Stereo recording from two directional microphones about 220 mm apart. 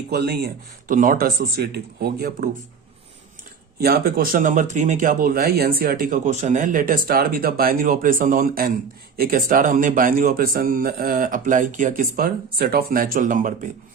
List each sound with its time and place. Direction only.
0.1 s speech: 45° right (ahead or behind)
3.8 s speech: 45° right (ahead or behind)